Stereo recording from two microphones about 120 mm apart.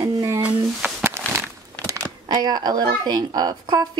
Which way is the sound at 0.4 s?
10° right (ahead or behind).